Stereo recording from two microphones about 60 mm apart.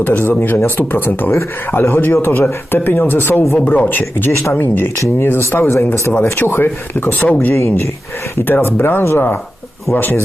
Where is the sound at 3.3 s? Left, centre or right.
Left.